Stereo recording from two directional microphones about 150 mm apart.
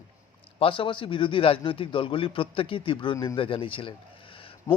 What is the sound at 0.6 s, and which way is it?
Speech, 35° left (ahead or behind).